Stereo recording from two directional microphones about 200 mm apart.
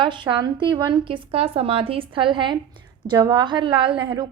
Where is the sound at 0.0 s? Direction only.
25° right (ahead or behind).